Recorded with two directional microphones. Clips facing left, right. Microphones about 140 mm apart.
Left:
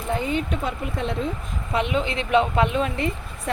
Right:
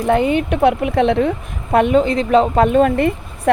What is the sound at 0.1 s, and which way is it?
Speech, 65° right (ahead or behind).